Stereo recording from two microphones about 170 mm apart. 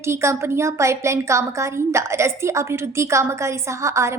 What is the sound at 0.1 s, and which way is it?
A woman's voice, 15° right (ahead or behind).